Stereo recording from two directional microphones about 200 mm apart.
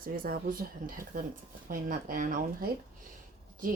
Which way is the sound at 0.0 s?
45° right (ahead or behind).